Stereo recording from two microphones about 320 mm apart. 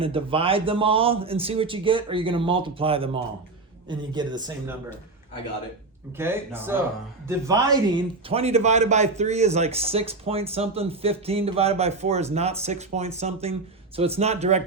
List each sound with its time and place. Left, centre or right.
0.0 s a man's voice: centre
6.1 s a man's voice: centre